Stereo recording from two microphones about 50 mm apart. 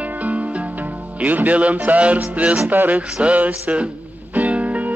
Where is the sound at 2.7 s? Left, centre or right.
Right.